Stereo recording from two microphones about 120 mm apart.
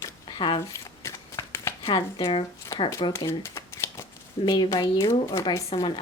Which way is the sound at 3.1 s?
25° left (ahead or behind).